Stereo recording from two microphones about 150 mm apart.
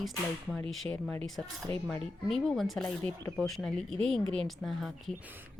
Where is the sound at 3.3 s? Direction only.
5° left (ahead or behind).